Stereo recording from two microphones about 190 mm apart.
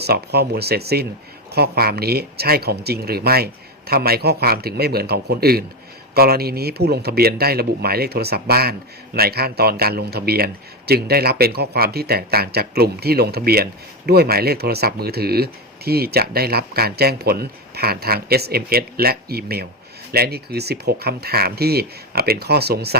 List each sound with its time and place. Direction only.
0.0 s speech: 60° right (ahead or behind)